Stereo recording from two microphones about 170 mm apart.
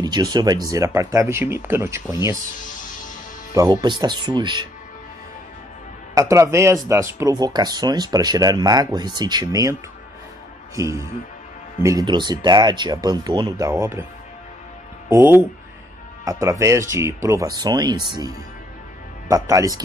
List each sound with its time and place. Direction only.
0.0 s speech: 25° right (ahead or behind)
3.5 s speech: 25° right (ahead or behind)
6.1 s speech: 20° right (ahead or behind)
10.8 s speech: 20° right (ahead or behind)
15.0 s speech: 10° right (ahead or behind)